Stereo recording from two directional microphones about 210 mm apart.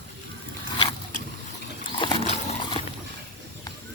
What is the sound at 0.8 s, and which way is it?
Zipper, 25° left (ahead or behind).